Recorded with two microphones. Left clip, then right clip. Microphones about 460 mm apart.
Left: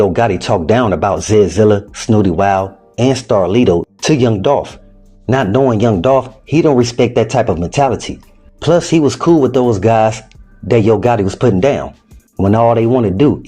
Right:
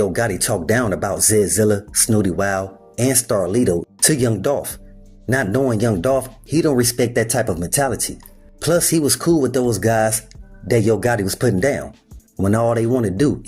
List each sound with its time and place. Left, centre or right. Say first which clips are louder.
0.0 s speech: left 7 dB; right
3.5 s speech: left 7 dB; right
4.0 s speech: left 5 dB; right